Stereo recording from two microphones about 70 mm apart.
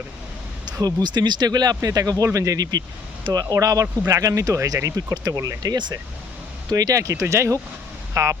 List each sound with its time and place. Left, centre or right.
0.8 s speech: right
3.5 s speech: right
5.1 s speech: right
5.4 s speech: right